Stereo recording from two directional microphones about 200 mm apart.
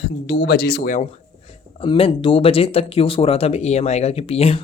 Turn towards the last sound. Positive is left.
turn(degrees=30)  # may be behind; listen again after turning